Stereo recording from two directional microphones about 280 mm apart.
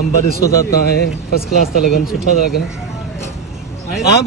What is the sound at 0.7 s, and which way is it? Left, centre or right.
Speech, left.